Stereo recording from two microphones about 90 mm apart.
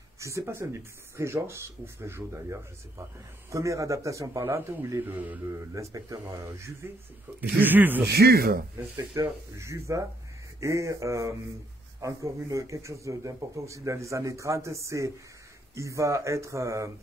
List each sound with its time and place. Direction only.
0.2 s a man's voice: 35° right (ahead or behind)
5.0 s a man's voice: 20° right (ahead or behind)
5.6 s a man's voice: 35° right (ahead or behind)
7.3 s a man's voice: 20° right (ahead or behind)
8.9 s a man's voice: 35° right (ahead or behind)